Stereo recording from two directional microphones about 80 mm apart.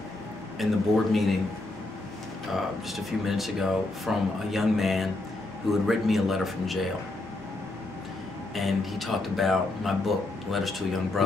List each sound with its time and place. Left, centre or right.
0.6 s speech: centre
2.5 s speech: centre
8.5 s speech: centre